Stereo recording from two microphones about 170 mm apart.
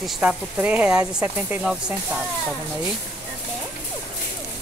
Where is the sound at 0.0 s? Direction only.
5° right (ahead or behind).